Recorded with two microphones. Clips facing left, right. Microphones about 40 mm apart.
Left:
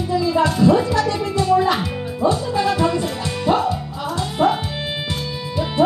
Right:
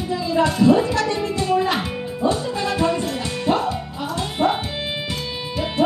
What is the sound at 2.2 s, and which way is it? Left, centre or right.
Music, right.